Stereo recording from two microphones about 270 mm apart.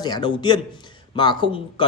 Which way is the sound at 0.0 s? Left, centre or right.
Centre.